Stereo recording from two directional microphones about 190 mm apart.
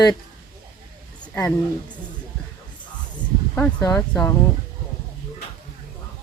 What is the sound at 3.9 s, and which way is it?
Speech, 5° left (ahead or behind).